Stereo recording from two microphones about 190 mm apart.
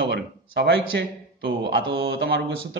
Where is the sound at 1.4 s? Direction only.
25° right (ahead or behind).